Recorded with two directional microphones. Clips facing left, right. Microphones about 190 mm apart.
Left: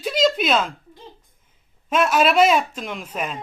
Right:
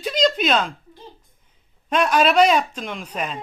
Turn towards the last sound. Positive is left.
turn(degrees=5)  # may be behind; listen again after turning